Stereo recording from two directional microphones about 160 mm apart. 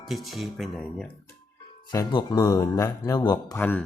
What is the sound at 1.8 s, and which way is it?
Speech, 25° left (ahead or behind).